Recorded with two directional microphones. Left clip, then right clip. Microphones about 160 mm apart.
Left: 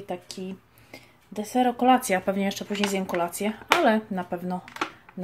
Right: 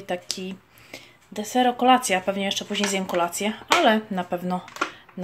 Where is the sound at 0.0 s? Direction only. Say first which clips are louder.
Right 5 dB; 5° right (ahead or behind); by 2.7 s 20° left (ahead or behind).